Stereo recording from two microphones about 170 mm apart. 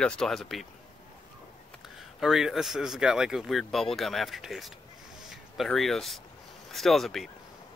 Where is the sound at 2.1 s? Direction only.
Centre (ahead or behind).